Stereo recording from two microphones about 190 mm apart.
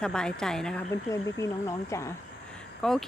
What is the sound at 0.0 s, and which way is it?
Speech, 5° left (ahead or behind).